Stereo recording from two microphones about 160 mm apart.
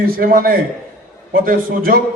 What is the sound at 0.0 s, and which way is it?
A man's voice, 65° right (ahead or behind).